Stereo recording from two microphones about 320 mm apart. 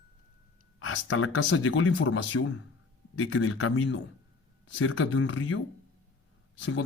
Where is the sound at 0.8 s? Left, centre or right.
Left.